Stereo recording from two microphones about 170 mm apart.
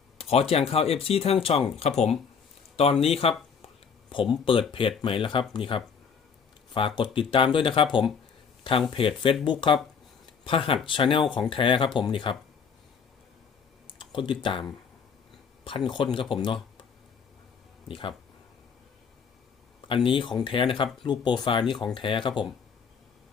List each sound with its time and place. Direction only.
0.2 s speech: 35° left (ahead or behind)
8.9 s speech: 30° left (ahead or behind)
14.0 s speech: 30° left (ahead or behind)
17.8 s speech: 30° left (ahead or behind)
20.1 s speech: 30° left (ahead or behind)